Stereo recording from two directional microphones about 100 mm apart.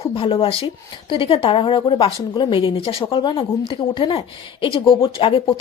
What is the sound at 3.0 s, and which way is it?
A woman's voice, 50° left (ahead or behind).